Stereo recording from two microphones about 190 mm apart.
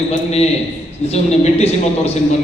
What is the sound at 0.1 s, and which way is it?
A man's voice, 35° left (ahead or behind).